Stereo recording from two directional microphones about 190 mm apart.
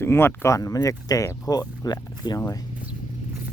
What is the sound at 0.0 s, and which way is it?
Speech, 10° left (ahead or behind).